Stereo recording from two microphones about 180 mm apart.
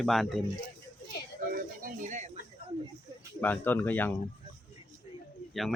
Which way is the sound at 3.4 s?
10° left (ahead or behind).